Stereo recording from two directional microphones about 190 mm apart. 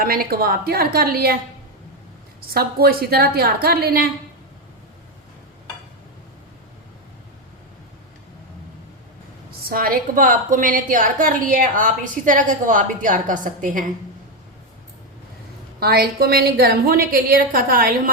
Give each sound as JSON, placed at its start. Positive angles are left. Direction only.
{"t": 0.0, "sound": "a woman's voice", "side_deg": -50}
{"t": 2.5, "sound": "a woman's voice", "side_deg": -55}
{"t": 9.5, "sound": "a woman's voice", "side_deg": -50}
{"t": 15.8, "sound": "a woman's voice", "side_deg": -55}